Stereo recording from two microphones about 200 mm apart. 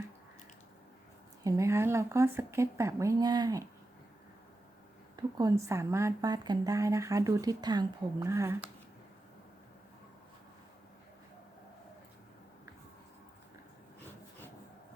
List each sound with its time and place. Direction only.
1.5 s a woman's voice: 15° right (ahead or behind)
5.1 s a woman's voice: 20° right (ahead or behind)